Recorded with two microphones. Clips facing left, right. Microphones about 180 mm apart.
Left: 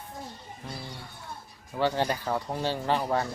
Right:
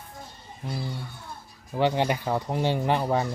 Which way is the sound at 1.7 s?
15° right (ahead or behind).